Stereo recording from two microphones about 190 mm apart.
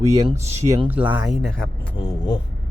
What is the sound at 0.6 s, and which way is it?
Speech, 15° right (ahead or behind).